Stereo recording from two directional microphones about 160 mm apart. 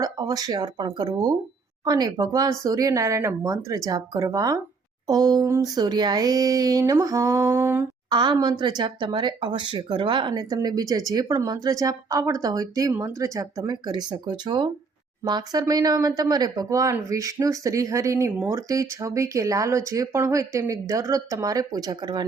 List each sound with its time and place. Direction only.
0.0 s speech: 25° right (ahead or behind)
8.1 s speech: 25° right (ahead or behind)